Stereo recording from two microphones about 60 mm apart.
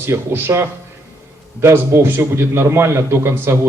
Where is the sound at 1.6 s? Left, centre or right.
Right.